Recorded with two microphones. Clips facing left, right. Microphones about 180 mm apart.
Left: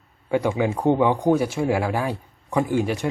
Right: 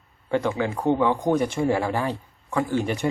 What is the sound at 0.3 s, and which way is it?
A man's voice, 10° left (ahead or behind).